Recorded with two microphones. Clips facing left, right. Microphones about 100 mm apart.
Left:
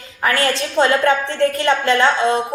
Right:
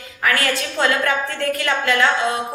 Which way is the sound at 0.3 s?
30° left (ahead or behind).